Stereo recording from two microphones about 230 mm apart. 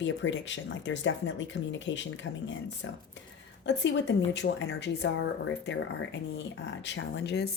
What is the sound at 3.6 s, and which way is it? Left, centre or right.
Speech, left.